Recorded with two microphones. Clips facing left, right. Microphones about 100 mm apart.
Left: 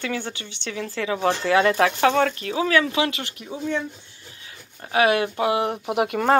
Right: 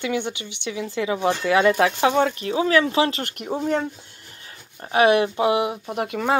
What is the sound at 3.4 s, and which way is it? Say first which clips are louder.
Speech: right 4 dB; 70° right (ahead or behind).